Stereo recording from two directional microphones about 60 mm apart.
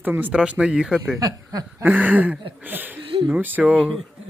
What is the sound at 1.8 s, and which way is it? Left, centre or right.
Speech, right.